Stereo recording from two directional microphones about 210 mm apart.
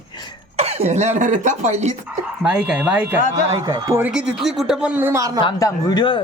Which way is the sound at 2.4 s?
5° right (ahead or behind).